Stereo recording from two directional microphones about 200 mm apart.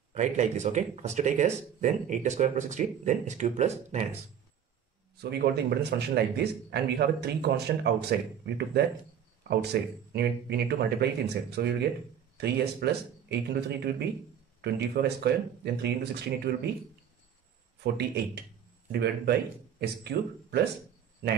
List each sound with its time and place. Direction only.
0.1 s speech: 35° right (ahead or behind)
5.1 s a man's voice: 55° right (ahead or behind)
17.9 s a man's voice: 55° right (ahead or behind)